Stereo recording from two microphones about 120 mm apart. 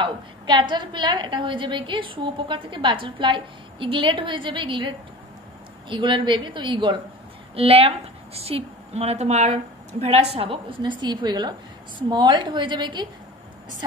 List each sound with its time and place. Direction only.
0.0 s a woman's voice: 40° right (ahead or behind)
7.5 s a woman's voice: 50° right (ahead or behind)